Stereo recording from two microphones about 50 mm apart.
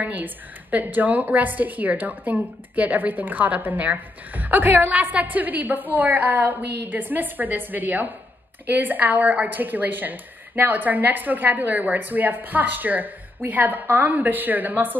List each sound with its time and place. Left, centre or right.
0.0 s speech: right
4.9 s speech: right